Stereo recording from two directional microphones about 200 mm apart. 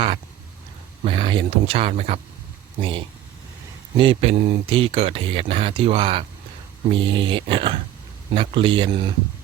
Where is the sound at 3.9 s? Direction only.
30° right (ahead or behind).